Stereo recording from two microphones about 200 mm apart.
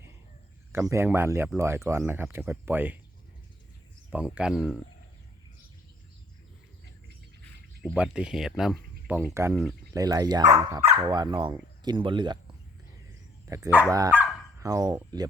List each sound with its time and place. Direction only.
0.7 s speech: 10° right (ahead or behind)
4.1 s speech: 5° right (ahead or behind)
7.8 s speech: centre (ahead or behind)
9.9 s speech: 20° right (ahead or behind)
13.5 s speech: 10° right (ahead or behind)